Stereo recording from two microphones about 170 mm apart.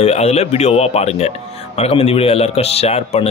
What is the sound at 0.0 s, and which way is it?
Speech, 35° left (ahead or behind).